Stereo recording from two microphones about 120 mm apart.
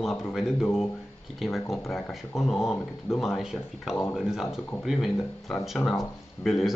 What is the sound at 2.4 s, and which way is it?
Speech, centre (ahead or behind).